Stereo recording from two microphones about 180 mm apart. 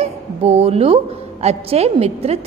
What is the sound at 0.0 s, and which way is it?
A woman's voice, 35° right (ahead or behind).